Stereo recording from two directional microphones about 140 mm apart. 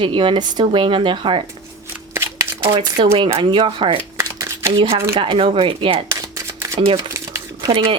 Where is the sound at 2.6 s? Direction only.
35° right (ahead or behind).